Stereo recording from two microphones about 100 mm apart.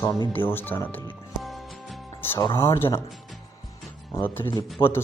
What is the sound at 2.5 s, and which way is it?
Speech, 25° left (ahead or behind).